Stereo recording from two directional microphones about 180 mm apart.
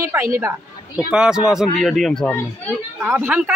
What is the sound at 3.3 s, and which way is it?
Speech, 5° right (ahead or behind).